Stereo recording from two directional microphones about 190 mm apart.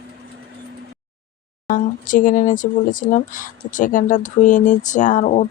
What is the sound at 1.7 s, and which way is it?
Speech, 45° left (ahead or behind).